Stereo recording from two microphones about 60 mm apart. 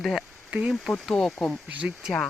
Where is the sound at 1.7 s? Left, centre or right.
Right.